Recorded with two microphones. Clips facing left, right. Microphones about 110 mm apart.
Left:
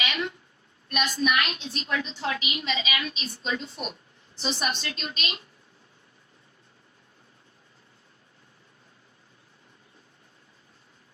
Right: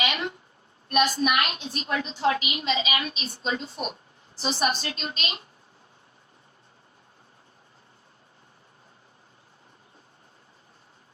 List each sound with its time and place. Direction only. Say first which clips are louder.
0.9 s a woman's voice: right 3 dB; 40° right (ahead or behind)